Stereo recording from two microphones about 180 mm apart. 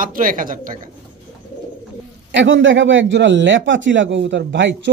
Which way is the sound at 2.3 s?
85° right.